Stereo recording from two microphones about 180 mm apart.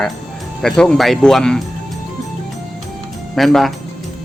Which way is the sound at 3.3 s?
Centre (ahead or behind).